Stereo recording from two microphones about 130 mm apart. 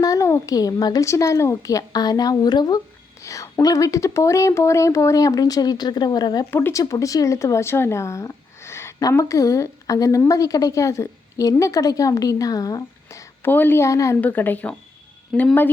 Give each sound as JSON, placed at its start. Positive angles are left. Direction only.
{"t": 0.0, "sound": "speech", "side_deg": 25}
{"t": 3.2, "sound": "speech", "side_deg": 25}
{"t": 6.5, "sound": "speech", "side_deg": 15}